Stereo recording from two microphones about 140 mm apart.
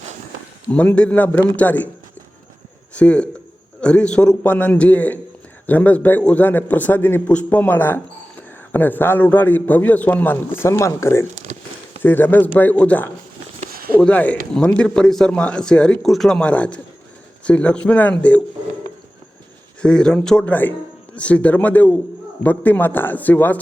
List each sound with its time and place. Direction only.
0.7 s a man's voice: 10° left (ahead or behind)
2.9 s a man's voice: 10° left (ahead or behind)
13.7 s a sound: 90° right
14.0 s a man's voice: 10° left (ahead or behind)
19.8 s a man's voice: 5° left (ahead or behind)